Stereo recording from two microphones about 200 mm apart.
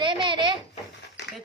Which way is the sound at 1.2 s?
60° left (ahead or behind).